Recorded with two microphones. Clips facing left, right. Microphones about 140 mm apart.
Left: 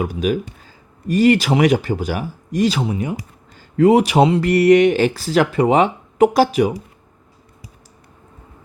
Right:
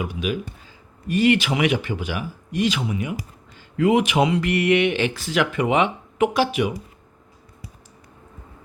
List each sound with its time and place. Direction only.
0.0 s speech: 40° left (ahead or behind)